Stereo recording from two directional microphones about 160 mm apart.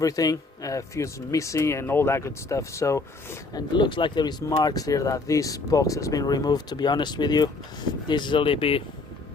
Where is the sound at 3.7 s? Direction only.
30° left (ahead or behind).